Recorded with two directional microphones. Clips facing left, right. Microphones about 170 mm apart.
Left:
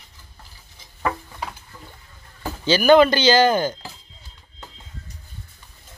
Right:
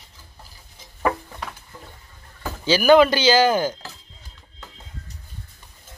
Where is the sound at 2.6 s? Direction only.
5° right (ahead or behind).